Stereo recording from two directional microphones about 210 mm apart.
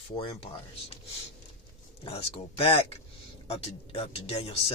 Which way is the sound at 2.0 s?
30° left (ahead or behind).